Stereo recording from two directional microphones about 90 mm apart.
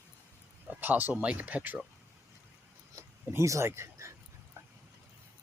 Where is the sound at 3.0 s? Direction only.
35° right (ahead or behind).